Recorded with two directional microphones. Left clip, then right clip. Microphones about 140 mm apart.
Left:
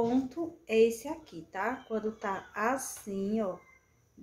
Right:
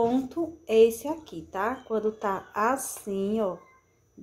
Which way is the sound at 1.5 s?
30° right (ahead or behind).